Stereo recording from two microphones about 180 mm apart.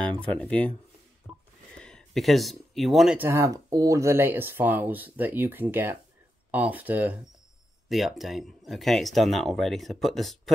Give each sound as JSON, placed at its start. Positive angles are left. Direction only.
{"t": 0.0, "sound": "speech", "side_deg": 5}
{"t": 3.3, "sound": "speech", "side_deg": -15}